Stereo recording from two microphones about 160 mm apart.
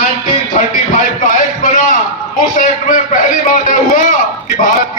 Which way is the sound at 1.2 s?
55° left (ahead or behind).